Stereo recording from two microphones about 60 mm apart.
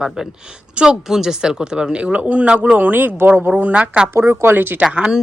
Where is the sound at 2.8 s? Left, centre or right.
Right.